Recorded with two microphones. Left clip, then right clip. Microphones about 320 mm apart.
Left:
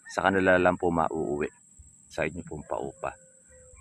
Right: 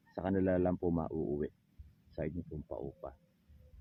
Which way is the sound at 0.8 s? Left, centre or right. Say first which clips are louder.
Left 10 dB; centre.